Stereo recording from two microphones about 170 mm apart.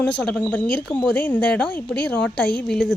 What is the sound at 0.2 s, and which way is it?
A woman's voice, 5° left (ahead or behind).